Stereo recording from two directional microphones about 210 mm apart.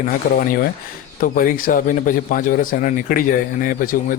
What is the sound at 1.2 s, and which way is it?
A man's voice, 40° left (ahead or behind).